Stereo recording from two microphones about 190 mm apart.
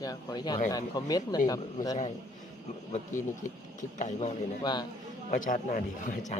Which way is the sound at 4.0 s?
35° left (ahead or behind).